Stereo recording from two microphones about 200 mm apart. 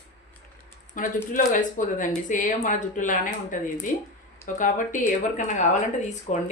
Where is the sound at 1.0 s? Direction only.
40° left (ahead or behind).